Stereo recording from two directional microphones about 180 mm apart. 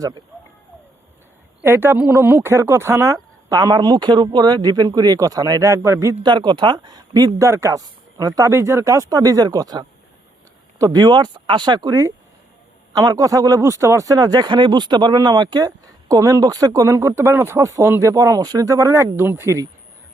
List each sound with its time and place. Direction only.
1.6 s speech: 15° right (ahead or behind)